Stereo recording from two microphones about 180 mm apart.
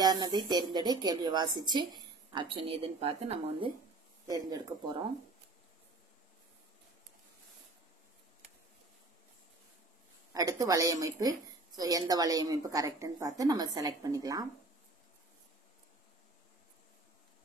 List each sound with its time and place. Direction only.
0.0 s a woman's voice: 25° right (ahead or behind)
4.3 s a woman's voice: 20° right (ahead or behind)
10.3 s a woman's voice: 20° right (ahead or behind)